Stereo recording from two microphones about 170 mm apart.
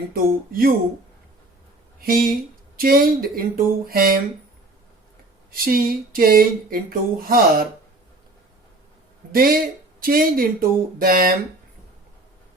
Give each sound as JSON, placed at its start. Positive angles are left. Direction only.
{"t": 0.1, "sound": "speech", "side_deg": -60}
{"t": 2.0, "sound": "speech", "side_deg": -60}
{"t": 5.5, "sound": "speech", "side_deg": -60}
{"t": 9.3, "sound": "speech", "side_deg": -60}